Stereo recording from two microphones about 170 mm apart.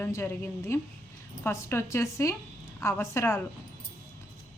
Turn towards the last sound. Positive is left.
turn(degrees=15)  # may be behind; listen again after turning